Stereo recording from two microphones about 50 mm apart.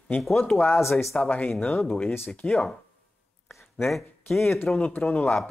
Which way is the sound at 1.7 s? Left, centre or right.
Left.